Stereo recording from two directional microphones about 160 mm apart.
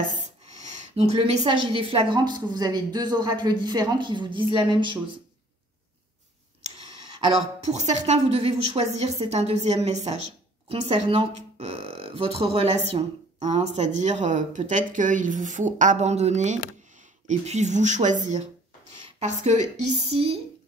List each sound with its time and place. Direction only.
0.6 s a woman's voice: 40° right (ahead or behind)
7.6 s a woman's voice: 45° right (ahead or behind)